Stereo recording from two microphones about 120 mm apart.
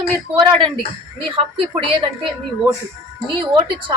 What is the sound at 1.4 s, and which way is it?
Speech, 50° right (ahead or behind).